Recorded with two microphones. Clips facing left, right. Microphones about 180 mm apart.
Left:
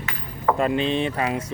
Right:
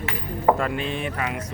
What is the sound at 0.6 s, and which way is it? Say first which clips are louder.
Speech: left 5 dB; 25° left (ahead or behind).